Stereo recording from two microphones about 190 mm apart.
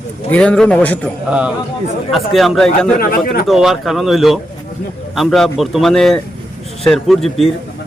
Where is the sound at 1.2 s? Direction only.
5° right (ahead or behind).